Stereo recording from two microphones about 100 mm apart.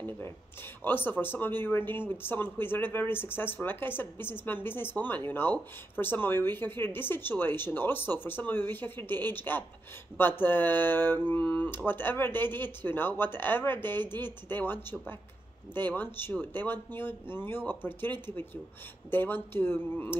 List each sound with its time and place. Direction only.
0.8 s speech: 20° left (ahead or behind)